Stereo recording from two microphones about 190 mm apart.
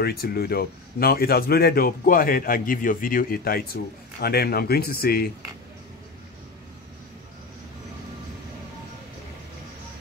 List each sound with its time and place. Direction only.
0.0 s speech: 55° left (ahead or behind)